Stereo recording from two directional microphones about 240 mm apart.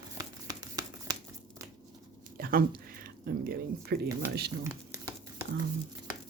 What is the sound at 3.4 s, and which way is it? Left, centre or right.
Speech, right.